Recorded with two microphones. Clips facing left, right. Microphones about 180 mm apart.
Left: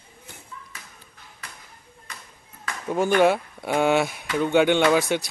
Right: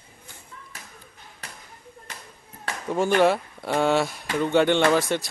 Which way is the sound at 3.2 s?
Centre (ahead or behind).